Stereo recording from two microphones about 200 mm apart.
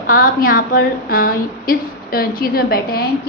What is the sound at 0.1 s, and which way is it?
A woman's voice, 45° left (ahead or behind).